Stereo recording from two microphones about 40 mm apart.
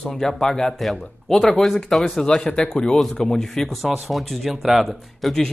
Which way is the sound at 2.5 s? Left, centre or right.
Left.